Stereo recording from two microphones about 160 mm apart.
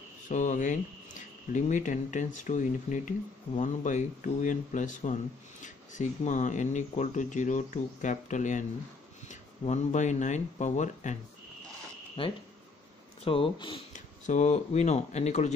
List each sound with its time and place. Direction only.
0.3 s speech: 50° left (ahead or behind)
12.2 s speech: 30° left (ahead or behind)
13.9 s speech: 50° left (ahead or behind)